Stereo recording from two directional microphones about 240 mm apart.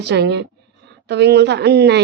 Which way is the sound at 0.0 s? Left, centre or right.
Right.